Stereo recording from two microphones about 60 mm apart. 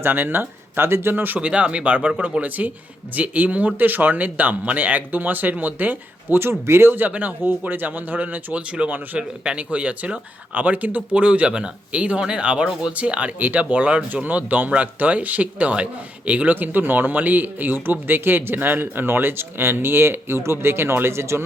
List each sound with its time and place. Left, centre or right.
0.0 s speech: right
1.1 s speech: right
1.4 s speech: centre
6.4 s speech: right